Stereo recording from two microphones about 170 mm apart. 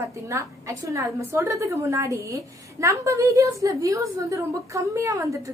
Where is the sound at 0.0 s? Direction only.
15° right (ahead or behind).